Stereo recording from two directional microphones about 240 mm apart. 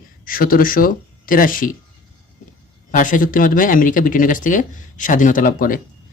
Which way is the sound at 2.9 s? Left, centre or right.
Left.